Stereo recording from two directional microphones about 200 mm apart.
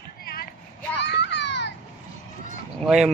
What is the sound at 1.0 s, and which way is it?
Children playing, 60° left (ahead or behind).